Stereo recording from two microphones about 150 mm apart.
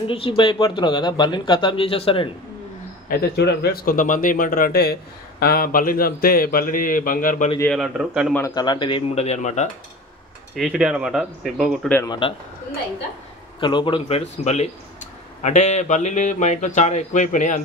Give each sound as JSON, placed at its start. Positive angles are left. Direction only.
{"t": 0.0, "sound": "speech", "side_deg": 35}
{"t": 3.1, "sound": "speech", "side_deg": 90}
{"t": 7.6, "sound": "speech", "side_deg": 0}
{"t": 8.4, "sound": "a man's voice", "side_deg": 15}
{"t": 8.6, "sound": "speech", "side_deg": 30}
{"t": 9.2, "sound": "speech", "side_deg": 50}
{"t": 10.5, "sound": "speech", "side_deg": 0}
{"t": 12.1, "sound": "speech", "side_deg": 35}
{"t": 13.6, "sound": "speech", "side_deg": 30}